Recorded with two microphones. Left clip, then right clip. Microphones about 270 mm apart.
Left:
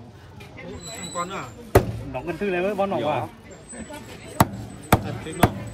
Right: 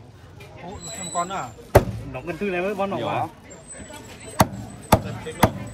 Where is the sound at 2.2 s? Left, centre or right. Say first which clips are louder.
Left 1 dB; centre.